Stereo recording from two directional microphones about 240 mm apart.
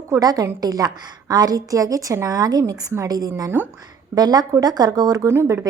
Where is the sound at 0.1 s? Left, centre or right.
Centre.